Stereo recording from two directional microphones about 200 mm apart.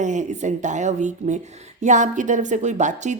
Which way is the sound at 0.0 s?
40° right (ahead or behind).